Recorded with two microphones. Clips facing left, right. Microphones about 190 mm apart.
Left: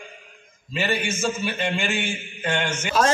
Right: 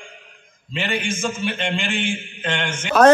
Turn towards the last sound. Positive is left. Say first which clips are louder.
# right 9 dB
turn(degrees=-65)  # may be behind; listen again after turning